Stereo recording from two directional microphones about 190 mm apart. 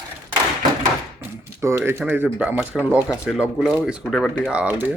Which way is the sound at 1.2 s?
15° right (ahead or behind).